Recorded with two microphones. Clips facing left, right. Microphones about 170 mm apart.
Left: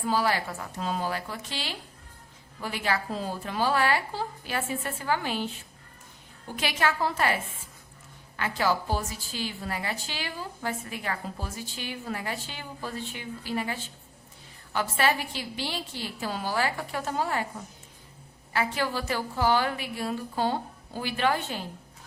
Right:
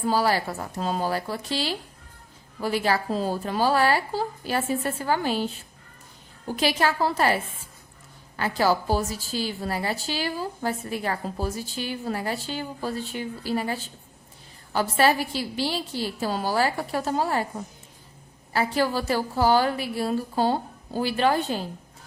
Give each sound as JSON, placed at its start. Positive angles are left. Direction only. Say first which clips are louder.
{"t": 0.1, "sound": "a woman's voice", "louder": "right 3 dB", "side_deg": -35}
{"t": 6.6, "sound": "a woman's voice", "louder": "right 4 dB", "side_deg": -35}
{"t": 8.4, "sound": "a woman's voice", "louder": "right 4 dB", "side_deg": -35}
{"t": 18.5, "sound": "a woman's voice", "louder": "right 5 dB", "side_deg": -35}